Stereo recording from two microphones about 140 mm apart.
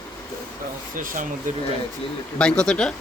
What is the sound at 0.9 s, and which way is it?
Speech, 75° right (ahead or behind).